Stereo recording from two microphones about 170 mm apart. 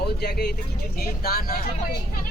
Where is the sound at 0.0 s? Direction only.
70° left (ahead or behind).